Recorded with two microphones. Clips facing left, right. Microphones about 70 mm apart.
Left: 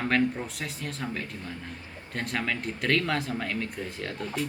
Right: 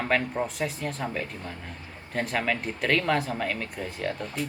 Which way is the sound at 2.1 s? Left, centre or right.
Centre.